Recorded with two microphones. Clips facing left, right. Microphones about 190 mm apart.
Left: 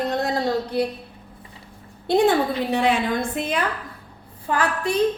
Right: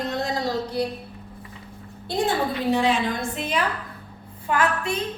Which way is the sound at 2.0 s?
60° left (ahead or behind).